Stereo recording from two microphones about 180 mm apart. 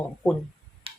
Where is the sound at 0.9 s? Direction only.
30° right (ahead or behind).